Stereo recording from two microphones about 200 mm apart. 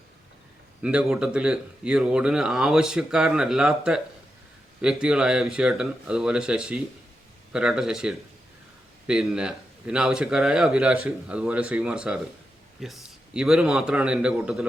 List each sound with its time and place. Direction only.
0.8 s speech: 5° right (ahead or behind)